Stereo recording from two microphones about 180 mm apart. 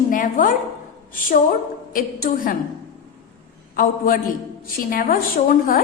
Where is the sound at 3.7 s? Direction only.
50° left (ahead or behind).